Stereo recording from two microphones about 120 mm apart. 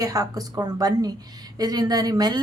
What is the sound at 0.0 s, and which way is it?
A woman's voice, 30° right (ahead or behind).